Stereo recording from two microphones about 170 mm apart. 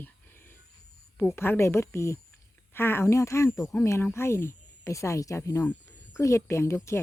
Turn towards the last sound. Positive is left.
turn(degrees=15)  # may be behind; listen again after turning